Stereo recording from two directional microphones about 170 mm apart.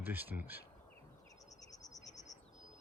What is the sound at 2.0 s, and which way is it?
Bird, 45° left (ahead or behind).